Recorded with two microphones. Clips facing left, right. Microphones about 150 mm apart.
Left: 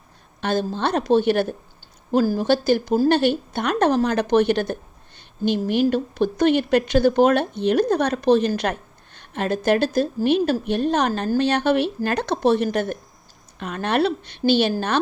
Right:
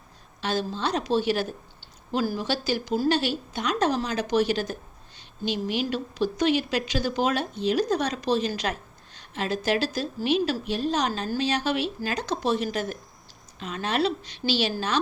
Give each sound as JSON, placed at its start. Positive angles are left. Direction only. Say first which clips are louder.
{"t": 0.4, "sound": "a woman's voice", "louder": "left 5 dB", "side_deg": 55}
{"t": 2.1, "sound": "a woman's voice", "louder": "left 8 dB", "side_deg": 45}